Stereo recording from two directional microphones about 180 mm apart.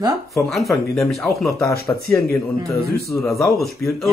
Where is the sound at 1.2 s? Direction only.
15° left (ahead or behind).